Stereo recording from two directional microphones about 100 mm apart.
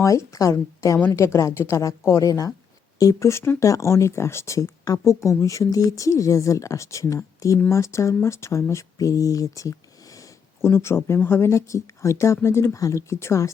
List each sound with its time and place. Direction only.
0.0 s speech: 30° left (ahead or behind)
8.7 s a sound: 35° left (ahead or behind)
10.8 s speech: 25° left (ahead or behind)